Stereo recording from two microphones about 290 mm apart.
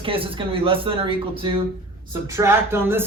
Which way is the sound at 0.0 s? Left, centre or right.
Centre.